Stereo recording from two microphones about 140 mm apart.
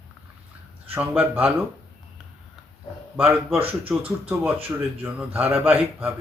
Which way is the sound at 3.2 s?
15° right (ahead or behind).